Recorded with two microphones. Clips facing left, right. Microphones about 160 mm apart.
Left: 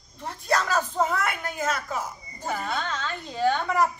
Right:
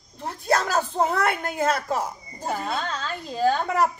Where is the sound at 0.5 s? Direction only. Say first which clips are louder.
Right 1 dB; 35° right (ahead or behind).